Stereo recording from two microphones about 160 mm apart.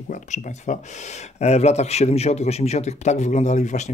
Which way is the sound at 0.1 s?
50° left (ahead or behind).